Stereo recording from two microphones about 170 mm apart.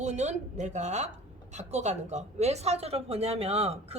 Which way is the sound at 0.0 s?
45° right (ahead or behind).